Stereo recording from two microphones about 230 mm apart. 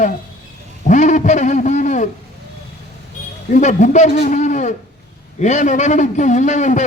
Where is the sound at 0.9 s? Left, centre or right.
Left.